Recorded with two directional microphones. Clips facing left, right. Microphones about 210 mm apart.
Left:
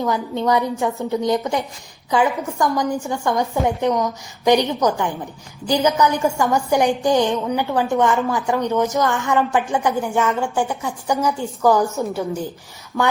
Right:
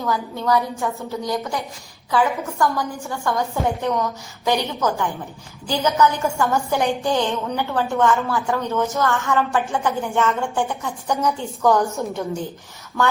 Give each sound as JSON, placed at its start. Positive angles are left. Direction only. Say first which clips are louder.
{"t": 0.0, "sound": "a woman's voice", "louder": "left 3 dB", "side_deg": 20}